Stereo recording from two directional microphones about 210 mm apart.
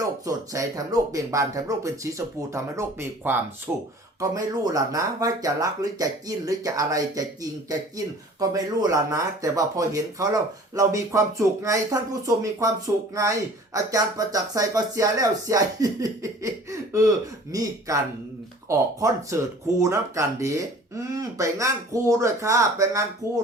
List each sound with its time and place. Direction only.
0.0 s speech: 15° right (ahead or behind)